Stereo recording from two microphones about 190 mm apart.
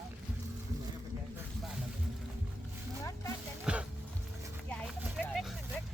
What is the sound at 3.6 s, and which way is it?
Music, 5° right (ahead or behind).